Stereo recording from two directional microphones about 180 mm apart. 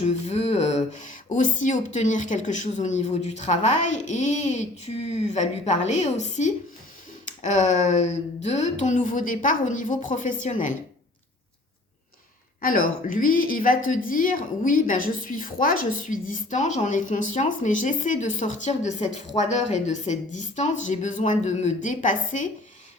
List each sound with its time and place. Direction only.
0.3 s a woman's voice: 35° left (ahead or behind)
12.6 s a woman's voice: 50° left (ahead or behind)